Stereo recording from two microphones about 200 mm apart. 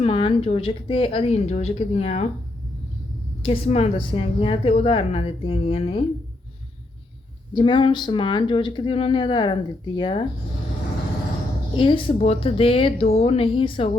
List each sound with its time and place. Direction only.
0.0 s speech: 25° left (ahead or behind)
3.4 s speech: 30° left (ahead or behind)
7.5 s speech: 25° left (ahead or behind)
11.8 s speech: 25° left (ahead or behind)